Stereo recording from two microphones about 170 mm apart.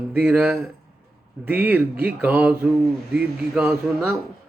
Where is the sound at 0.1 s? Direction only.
10° right (ahead or behind).